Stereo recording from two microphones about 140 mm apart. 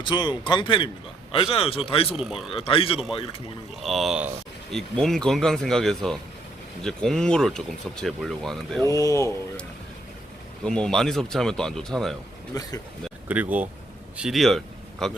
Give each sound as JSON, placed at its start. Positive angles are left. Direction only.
{"t": 0.0, "sound": "a man's voice", "side_deg": 35}
{"t": 3.8, "sound": "speech", "side_deg": 0}
{"t": 8.9, "sound": "speech", "side_deg": 25}
{"t": 10.6, "sound": "speech", "side_deg": 5}
{"t": 12.5, "sound": "speech", "side_deg": 25}
{"t": 13.2, "sound": "speech", "side_deg": -10}